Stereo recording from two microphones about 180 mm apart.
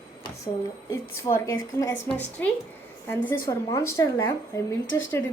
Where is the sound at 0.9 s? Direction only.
15° left (ahead or behind).